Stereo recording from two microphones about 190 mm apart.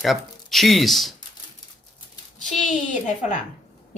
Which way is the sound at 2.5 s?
40° left (ahead or behind).